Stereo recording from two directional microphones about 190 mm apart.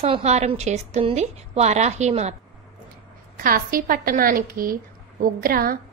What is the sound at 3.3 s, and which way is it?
A woman's voice, 50° right (ahead or behind).